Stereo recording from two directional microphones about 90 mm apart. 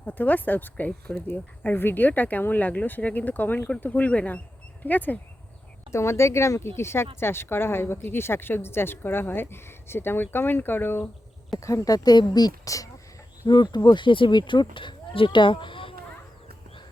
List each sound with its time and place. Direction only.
0.0 s speech: 20° left (ahead or behind)
5.9 s speech: 30° left (ahead or behind)
11.6 s speech: 35° left (ahead or behind)
13.5 s speech: 55° left (ahead or behind); by 16.0 s 75° left (ahead or behind)